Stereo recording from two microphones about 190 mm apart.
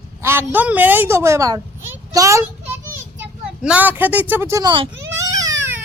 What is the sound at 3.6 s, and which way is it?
A woman's voice, 5° right (ahead or behind).